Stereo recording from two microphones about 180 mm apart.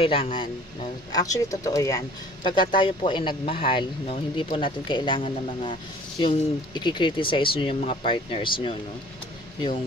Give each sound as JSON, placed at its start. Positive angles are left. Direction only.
{"t": 0.0, "sound": "speech", "side_deg": 30}